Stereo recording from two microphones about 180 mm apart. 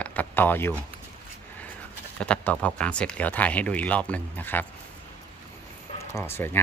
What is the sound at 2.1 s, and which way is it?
Speech, 5° left (ahead or behind).